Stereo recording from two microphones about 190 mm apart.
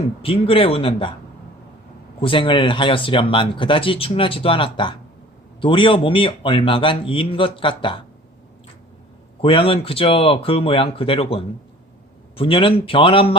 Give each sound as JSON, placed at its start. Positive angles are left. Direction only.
{"t": 0.0, "sound": "speech", "side_deg": 30}
{"t": 2.2, "sound": "speech", "side_deg": 25}
{"t": 9.4, "sound": "speech", "side_deg": 30}
{"t": 12.4, "sound": "speech", "side_deg": 30}